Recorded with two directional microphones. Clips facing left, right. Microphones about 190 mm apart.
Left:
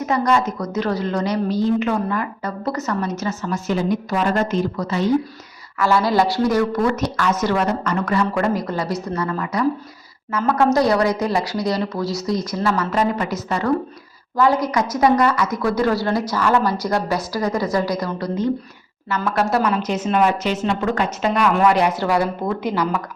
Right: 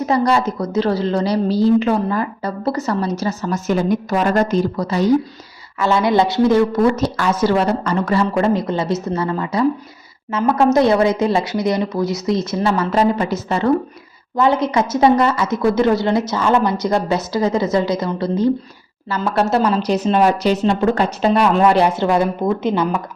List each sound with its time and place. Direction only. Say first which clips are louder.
0.0 s a woman's voice: right 2 dB; 35° right (ahead or behind)
5.8 s a woman's voice: right 2 dB; 20° right (ahead or behind)